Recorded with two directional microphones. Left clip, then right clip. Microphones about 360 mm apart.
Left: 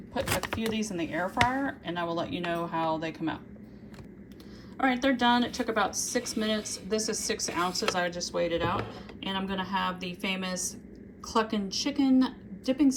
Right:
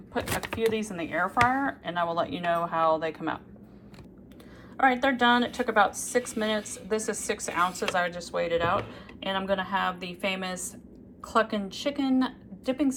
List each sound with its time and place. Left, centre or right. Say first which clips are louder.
0.1 s a woman's voice: even; centre
4.8 s a woman's voice: right 3 dB; centre